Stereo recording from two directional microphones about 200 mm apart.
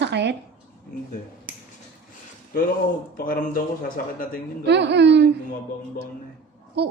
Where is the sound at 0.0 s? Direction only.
60° right (ahead or behind).